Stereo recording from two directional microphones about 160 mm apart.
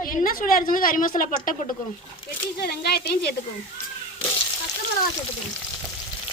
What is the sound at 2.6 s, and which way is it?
Speech, 85° left.